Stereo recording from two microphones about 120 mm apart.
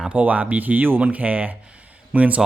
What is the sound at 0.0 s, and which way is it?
Speech, 10° right (ahead or behind).